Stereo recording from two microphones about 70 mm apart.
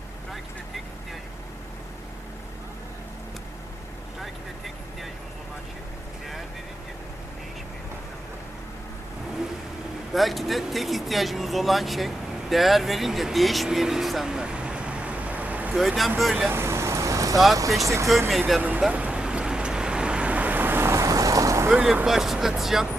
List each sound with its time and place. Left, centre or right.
10.1 s speech: centre; by 15.7 s right
16.0 s speech: centre
16.5 s vehicle: right
17.8 s speech: right
18.3 s speech: centre
18.9 s vehicle: centre
20.9 s vehicle: right
22.0 s speech: centre